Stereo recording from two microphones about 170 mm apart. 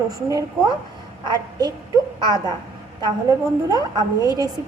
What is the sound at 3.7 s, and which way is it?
Speech, 20° right (ahead or behind).